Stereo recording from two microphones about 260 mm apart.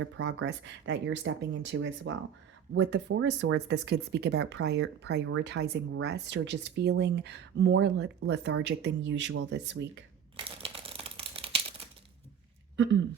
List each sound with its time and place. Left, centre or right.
0.0 s speech: right
10.3 s crumpling: right